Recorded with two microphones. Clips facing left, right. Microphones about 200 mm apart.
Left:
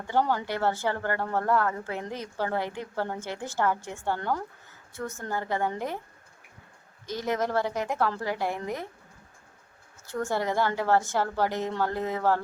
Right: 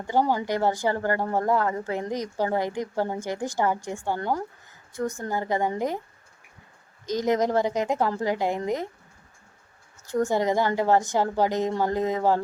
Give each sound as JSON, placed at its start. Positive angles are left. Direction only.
{"t": 0.1, "sound": "a woman's voice", "side_deg": -15}
{"t": 7.1, "sound": "a woman's voice", "side_deg": -15}
{"t": 10.1, "sound": "a woman's voice", "side_deg": -15}